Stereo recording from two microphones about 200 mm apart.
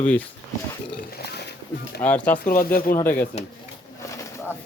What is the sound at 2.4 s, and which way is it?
Speech, 45° left (ahead or behind).